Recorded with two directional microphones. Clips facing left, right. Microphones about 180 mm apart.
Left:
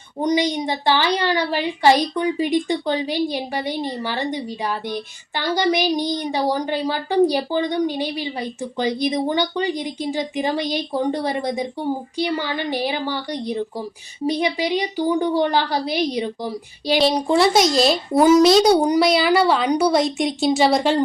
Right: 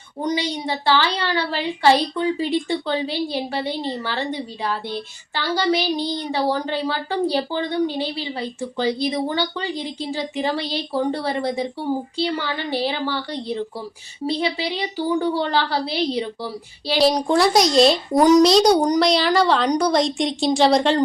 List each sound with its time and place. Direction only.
0.2 s a woman's voice: 20° left (ahead or behind)
17.0 s a child's voice: centre (ahead or behind)